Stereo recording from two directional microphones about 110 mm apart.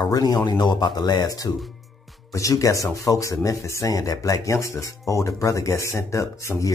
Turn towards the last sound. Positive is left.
turn(degrees=25)  # may be behind; listen again after turning